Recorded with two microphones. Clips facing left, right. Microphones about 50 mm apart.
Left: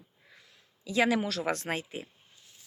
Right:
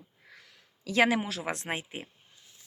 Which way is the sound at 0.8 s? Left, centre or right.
Right.